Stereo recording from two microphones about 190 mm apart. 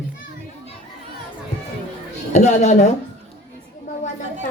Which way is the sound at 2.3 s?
35° left (ahead or behind).